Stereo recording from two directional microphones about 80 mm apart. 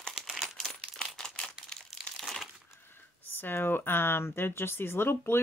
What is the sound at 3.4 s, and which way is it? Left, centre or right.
Speech, left.